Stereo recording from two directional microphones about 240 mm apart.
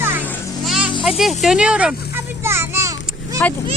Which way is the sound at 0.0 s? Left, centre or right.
Centre.